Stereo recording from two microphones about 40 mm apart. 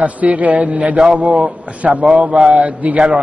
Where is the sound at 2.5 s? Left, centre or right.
Right.